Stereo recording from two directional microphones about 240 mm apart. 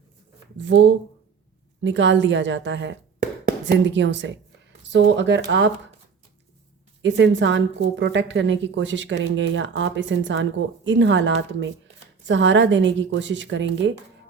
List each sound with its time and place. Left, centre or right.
0.5 s a woman's voice: right
7.0 s a woman's voice: right